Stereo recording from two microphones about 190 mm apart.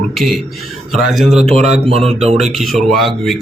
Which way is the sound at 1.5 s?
35° right (ahead or behind).